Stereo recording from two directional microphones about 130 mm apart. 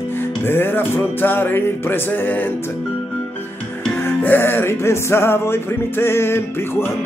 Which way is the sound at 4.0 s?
15° left (ahead or behind).